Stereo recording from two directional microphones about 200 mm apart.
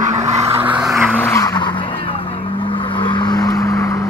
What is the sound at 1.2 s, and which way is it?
Vehicle, 15° left (ahead or behind).